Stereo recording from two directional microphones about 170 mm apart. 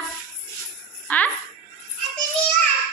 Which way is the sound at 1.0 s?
10° left (ahead or behind).